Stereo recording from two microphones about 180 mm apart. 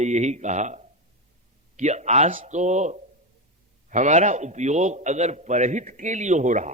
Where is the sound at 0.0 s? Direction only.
40° right (ahead or behind).